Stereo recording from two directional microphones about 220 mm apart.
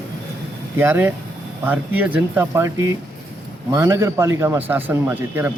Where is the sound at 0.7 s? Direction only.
10° right (ahead or behind).